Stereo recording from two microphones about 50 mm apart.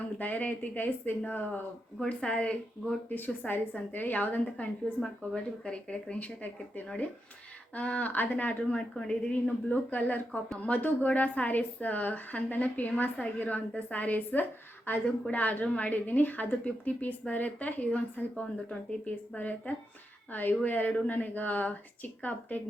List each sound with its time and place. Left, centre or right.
0.2 s a woman's voice: left
2.0 s speech: left
3.1 s a woman's voice: left
4.9 s speech: centre
6.1 s a woman's voice: left
9.0 s speech: centre
9.3 s a woman's voice: left
15.3 s a woman's voice: left
18.3 s speech: left
19.4 s a woman's voice: left